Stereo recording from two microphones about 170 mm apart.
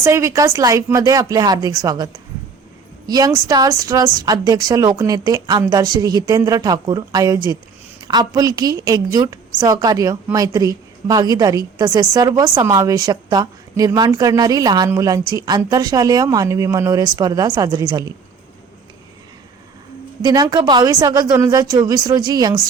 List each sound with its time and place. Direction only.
0.0 s a woman's voice: 15° right (ahead or behind)
3.1 s a woman's voice: 20° right (ahead or behind)
20.2 s a woman's voice: 25° right (ahead or behind)